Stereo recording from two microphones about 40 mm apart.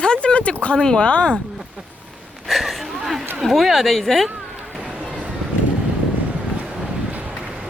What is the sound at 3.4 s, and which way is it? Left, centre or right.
Speech, centre.